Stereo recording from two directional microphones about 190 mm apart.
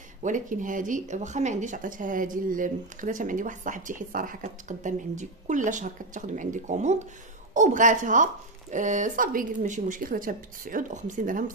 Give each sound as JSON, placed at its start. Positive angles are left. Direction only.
{"t": 0.2, "sound": "speech", "side_deg": -45}